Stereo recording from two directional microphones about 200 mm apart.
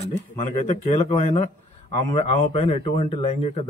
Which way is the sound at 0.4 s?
35° left (ahead or behind).